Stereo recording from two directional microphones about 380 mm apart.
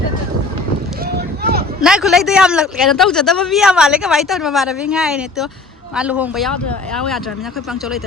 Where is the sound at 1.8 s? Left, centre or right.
Centre.